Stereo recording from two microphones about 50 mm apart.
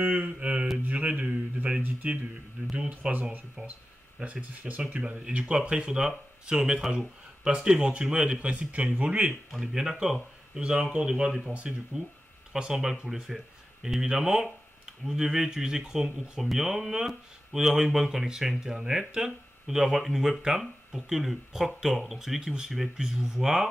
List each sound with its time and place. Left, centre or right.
0.0 s speech: right
2.0 s speech: right
4.2 s speech: right
9.5 s speech: centre